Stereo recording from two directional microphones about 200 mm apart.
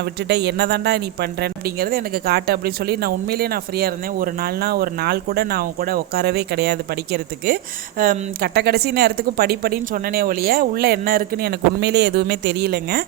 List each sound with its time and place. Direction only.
0.3 s speech: 55° right (ahead or behind)